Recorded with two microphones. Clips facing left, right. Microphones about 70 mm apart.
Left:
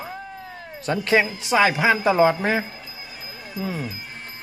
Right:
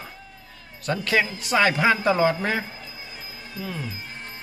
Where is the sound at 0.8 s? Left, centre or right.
Left.